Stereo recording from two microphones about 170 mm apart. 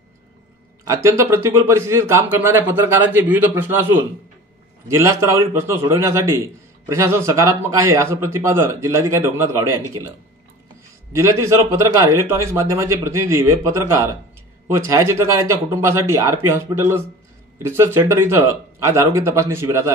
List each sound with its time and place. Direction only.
0.8 s a man's voice: 15° right (ahead or behind)
11.1 s a man's voice: 15° right (ahead or behind)